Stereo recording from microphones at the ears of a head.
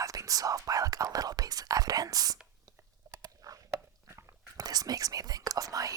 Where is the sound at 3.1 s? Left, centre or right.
Right.